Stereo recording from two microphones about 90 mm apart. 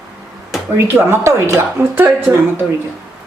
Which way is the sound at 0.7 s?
25° right (ahead or behind).